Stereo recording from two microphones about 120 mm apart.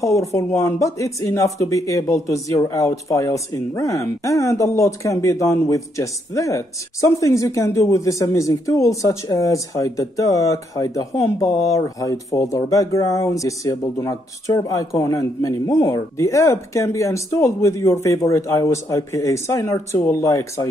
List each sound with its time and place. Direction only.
0.0 s speech: 25° left (ahead or behind)